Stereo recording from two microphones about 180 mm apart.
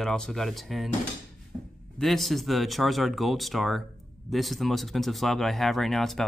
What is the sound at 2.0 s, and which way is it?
Speech, centre (ahead or behind).